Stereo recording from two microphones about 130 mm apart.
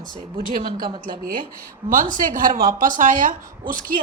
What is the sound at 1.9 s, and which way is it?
Speech, 90° right.